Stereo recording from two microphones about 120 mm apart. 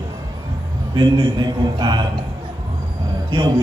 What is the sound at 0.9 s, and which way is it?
Speech, 35° right (ahead or behind).